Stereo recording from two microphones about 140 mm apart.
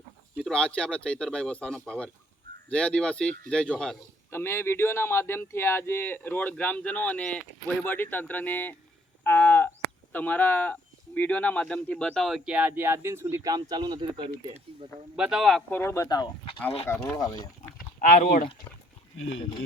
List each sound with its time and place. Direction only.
0.4 s speech: 5° left (ahead or behind)
4.3 s speech: 15° left (ahead or behind); by 14.3 s 30° right (ahead or behind)
15.1 s speech: 5° right (ahead or behind)
15.7 s speech: 20° left (ahead or behind)
16.9 s speech: 15° left (ahead or behind)
17.2 s speech: 30° left (ahead or behind)
18.0 s speech: 70° left (ahead or behind)